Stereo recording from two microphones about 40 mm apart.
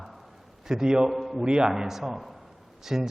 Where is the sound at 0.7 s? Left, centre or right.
Centre.